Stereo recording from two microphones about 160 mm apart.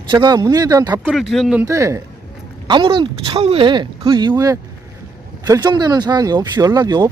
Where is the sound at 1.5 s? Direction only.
15° right (ahead or behind).